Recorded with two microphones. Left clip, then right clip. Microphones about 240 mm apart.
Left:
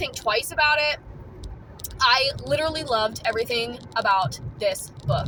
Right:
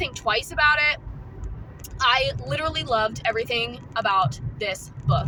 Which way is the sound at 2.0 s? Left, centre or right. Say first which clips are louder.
Left 1 dB; centre.